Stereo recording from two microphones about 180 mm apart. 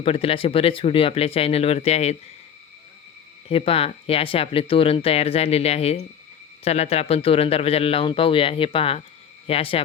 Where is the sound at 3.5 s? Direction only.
30° left (ahead or behind).